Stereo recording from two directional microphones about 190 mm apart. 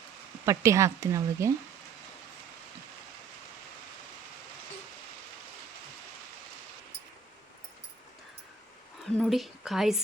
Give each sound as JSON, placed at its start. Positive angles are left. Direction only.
{"t": 0.4, "sound": "speech", "side_deg": -15}
{"t": 9.1, "sound": "a woman's voice", "side_deg": 0}